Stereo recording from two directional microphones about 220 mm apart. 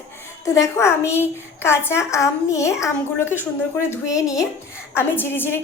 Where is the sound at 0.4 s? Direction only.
15° left (ahead or behind).